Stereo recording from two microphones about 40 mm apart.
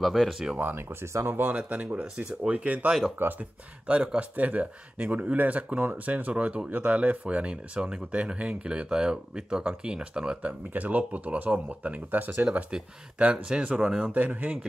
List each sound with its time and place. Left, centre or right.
0.2 s speech: centre
0.7 s speech: right
1.7 s speech: right
3.2 s speech: right
3.8 s speech: right
10.3 s speech: right
12.1 s speech: right
13.2 s speech: right
14.0 s speech: right